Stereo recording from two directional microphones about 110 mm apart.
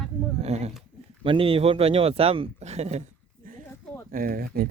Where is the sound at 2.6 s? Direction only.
85° right.